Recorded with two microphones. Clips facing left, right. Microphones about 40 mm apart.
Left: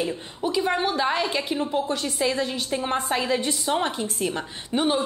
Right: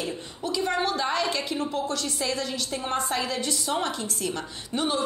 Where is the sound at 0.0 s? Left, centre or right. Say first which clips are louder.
Left 5 dB; left.